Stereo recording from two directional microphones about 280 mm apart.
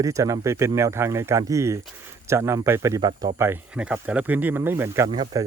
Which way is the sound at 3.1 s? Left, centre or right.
Right.